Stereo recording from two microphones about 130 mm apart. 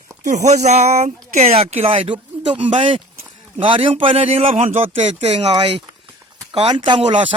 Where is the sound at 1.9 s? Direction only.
40° right (ahead or behind).